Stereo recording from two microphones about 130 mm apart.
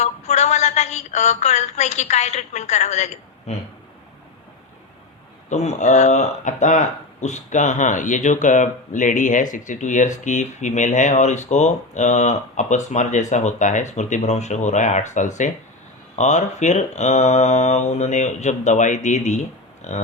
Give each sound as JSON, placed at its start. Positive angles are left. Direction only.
{"t": 0.0, "sound": "a woman's voice", "side_deg": 60}
{"t": 5.5, "sound": "speech", "side_deg": 60}